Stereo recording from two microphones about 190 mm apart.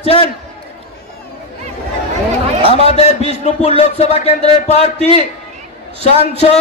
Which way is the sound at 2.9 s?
35° left (ahead or behind).